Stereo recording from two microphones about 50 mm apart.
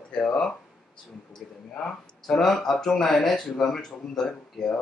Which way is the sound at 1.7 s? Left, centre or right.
Centre.